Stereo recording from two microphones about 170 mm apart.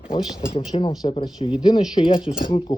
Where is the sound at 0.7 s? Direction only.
30° left (ahead or behind).